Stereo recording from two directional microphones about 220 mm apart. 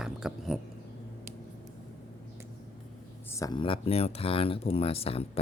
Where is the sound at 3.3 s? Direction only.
15° left (ahead or behind).